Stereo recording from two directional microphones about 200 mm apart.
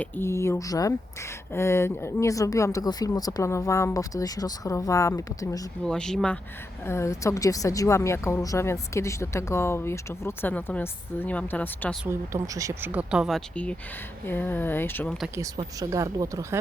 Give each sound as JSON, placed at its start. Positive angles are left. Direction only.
{"t": 0.0, "sound": "speech", "side_deg": 10}
{"t": 5.8, "sound": "speech", "side_deg": 5}
{"t": 12.0, "sound": "speech", "side_deg": -15}
{"t": 15.4, "sound": "speech", "side_deg": -15}